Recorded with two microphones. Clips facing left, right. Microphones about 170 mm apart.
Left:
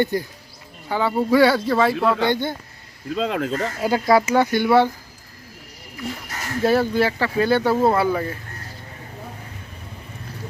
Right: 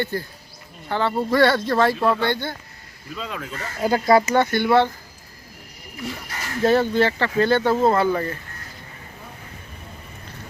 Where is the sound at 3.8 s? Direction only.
5° left (ahead or behind).